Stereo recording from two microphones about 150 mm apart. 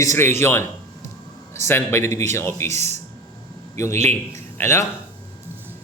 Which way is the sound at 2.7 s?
50° right (ahead or behind).